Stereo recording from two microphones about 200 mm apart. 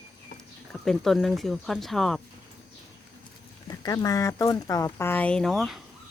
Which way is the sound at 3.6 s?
20° left (ahead or behind).